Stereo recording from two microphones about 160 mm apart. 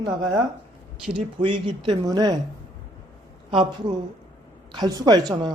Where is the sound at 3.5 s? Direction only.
30° right (ahead or behind).